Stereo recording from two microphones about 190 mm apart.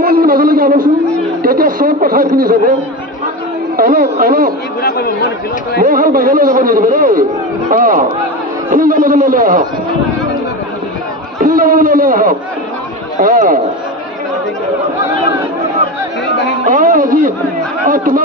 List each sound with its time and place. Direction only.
0.0 s a sound: 50° right (ahead or behind)
1.4 s speech: 45° right (ahead or behind)
3.7 s a man's voice: 45° right (ahead or behind)
5.8 s a man's voice: 45° right (ahead or behind)
11.4 s a man's voice: 45° right (ahead or behind)
16.6 s a sound: 45° right (ahead or behind)
17.8 s a man's voice: 45° right (ahead or behind)